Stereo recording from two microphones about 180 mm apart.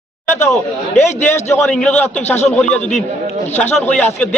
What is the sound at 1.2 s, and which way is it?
A man's voice, 15° left (ahead or behind).